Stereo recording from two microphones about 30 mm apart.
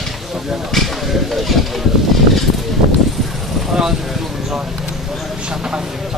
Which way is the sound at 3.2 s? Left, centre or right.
Centre.